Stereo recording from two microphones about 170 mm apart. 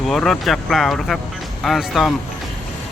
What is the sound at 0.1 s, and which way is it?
Speech, centre (ahead or behind).